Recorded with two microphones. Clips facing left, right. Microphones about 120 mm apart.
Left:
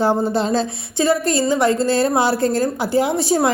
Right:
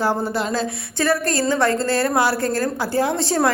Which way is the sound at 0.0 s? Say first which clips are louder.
Left 4 dB; 25° left (ahead or behind).